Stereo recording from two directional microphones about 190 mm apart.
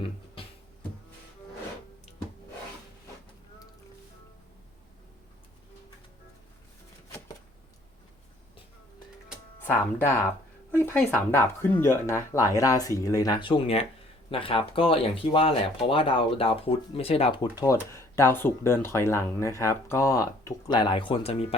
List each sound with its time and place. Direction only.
9.6 s speech: 10° left (ahead or behind); by 17.5 s 30° left (ahead or behind)
17.6 s speech: 15° left (ahead or behind)